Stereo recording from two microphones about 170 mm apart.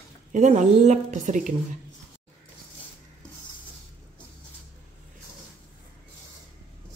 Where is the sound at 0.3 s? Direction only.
45° right (ahead or behind).